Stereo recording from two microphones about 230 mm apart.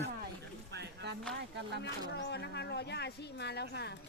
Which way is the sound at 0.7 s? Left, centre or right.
Right.